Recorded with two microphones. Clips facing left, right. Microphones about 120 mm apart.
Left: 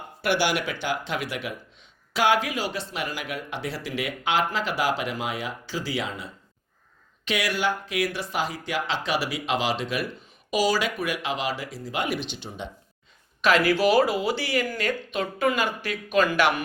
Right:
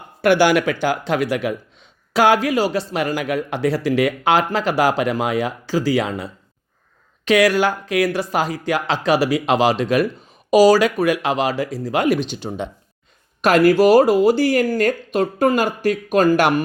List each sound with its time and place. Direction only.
0.2 s speech: 45° right (ahead or behind)
7.3 s speech: 40° right (ahead or behind)
11.8 s speech: 90° right
12.0 s speech: 40° right (ahead or behind)
13.4 s speech: 45° right (ahead or behind)